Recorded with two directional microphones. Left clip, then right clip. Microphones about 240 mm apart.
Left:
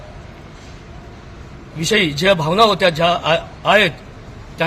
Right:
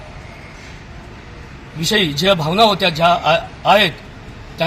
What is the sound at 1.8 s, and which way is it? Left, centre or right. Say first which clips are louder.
Speech: even; left.